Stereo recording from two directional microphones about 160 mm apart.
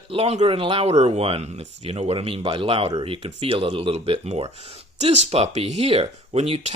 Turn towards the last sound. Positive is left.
turn(degrees=-35)  # may be behind; listen again after turning